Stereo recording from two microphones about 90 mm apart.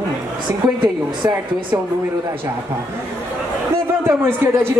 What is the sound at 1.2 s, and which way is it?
Speech, 30° right (ahead or behind).